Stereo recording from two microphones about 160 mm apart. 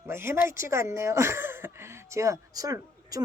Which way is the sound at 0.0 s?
15° right (ahead or behind).